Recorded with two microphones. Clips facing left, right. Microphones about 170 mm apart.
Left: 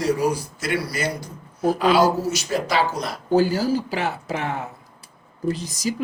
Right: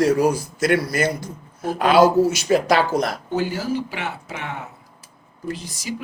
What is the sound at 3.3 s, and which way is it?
Speech, 35° left (ahead or behind).